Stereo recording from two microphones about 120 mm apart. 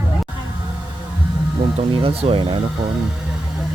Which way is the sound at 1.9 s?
50° right (ahead or behind).